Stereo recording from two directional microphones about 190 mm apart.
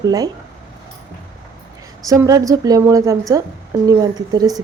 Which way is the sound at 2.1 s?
20° right (ahead or behind).